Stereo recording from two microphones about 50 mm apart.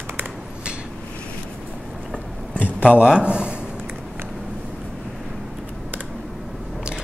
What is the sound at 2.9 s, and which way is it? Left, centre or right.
Speech, right.